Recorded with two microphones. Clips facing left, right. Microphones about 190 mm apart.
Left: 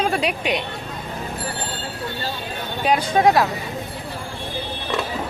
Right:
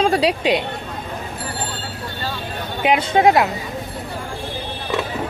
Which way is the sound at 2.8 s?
25° right (ahead or behind).